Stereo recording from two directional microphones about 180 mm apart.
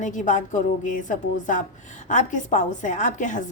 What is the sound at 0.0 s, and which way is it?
A woman's voice, 45° left (ahead or behind).